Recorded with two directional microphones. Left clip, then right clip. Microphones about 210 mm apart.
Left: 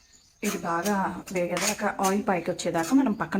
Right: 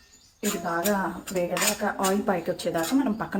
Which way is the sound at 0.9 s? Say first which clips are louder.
Right 1 dB; 15° left (ahead or behind).